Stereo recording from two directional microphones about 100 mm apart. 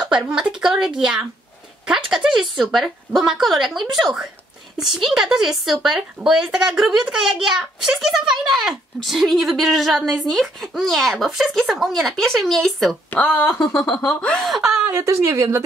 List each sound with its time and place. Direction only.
0.1 s speech: 10° right (ahead or behind)
13.1 s speech: 15° left (ahead or behind)
13.7 s speech: 5° left (ahead or behind)
14.4 s speech: centre (ahead or behind)
14.9 s a woman's voice: 25° right (ahead or behind)